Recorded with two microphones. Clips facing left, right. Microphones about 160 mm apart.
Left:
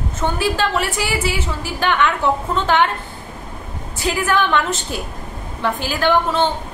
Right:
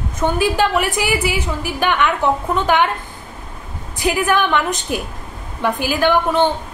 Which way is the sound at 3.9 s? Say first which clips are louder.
Right 2 dB; 15° right (ahead or behind).